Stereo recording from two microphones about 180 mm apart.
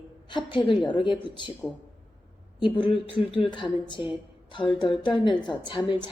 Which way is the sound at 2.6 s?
25° left (ahead or behind).